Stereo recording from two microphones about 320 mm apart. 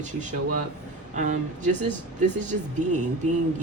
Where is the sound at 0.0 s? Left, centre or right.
Right.